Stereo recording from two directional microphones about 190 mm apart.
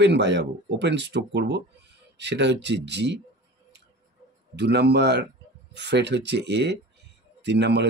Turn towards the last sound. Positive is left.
turn(degrees=-60)  # may be behind; listen again after turning